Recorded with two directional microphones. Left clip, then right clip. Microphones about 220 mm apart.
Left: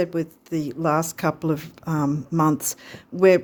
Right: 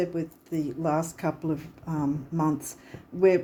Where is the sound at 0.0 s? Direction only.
40° left (ahead or behind).